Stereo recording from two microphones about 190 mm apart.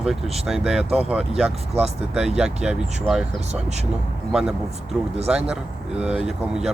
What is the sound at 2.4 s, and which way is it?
Speech, 5° right (ahead or behind).